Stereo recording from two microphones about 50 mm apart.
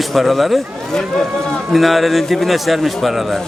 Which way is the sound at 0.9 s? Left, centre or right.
Centre.